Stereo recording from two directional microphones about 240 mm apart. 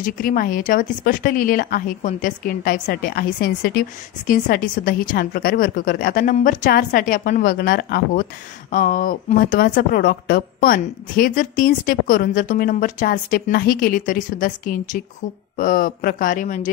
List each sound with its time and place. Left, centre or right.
0.0 s speech: left